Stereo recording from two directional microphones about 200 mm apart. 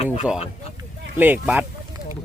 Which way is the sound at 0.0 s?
30° left (ahead or behind).